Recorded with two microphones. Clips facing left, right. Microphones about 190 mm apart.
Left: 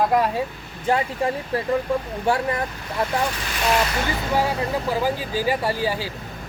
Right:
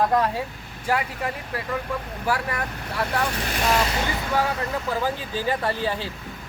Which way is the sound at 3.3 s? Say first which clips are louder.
Right 1 dB; 55° right (ahead or behind).